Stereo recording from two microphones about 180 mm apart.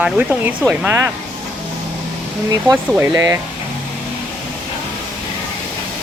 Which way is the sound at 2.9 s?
15° right (ahead or behind).